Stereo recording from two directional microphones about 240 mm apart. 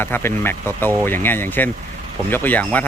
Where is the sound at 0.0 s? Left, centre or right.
Centre.